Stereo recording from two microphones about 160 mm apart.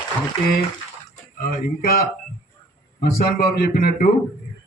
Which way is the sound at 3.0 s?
75° left (ahead or behind).